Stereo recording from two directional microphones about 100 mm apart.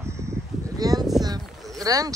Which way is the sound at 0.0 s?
30° right (ahead or behind).